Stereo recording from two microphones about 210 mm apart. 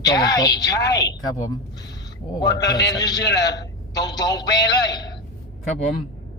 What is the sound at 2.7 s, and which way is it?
A woman's voice, 20° left (ahead or behind).